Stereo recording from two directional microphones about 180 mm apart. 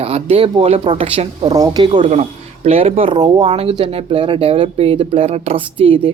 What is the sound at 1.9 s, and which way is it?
Speech, 45° right (ahead or behind).